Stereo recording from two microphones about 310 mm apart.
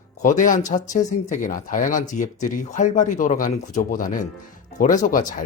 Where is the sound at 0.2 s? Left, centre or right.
Left.